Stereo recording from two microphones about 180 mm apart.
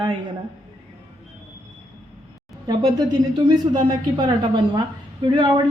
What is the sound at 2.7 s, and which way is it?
Speech, 20° right (ahead or behind).